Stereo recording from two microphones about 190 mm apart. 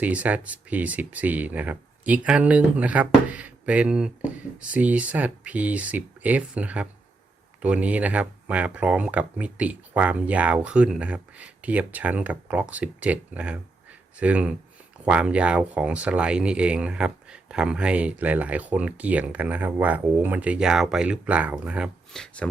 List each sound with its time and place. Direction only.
0.0 s speech: 10° right (ahead or behind)